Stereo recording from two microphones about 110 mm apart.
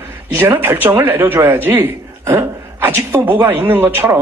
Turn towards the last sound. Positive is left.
turn(degrees=-25)  # may be behind; listen again after turning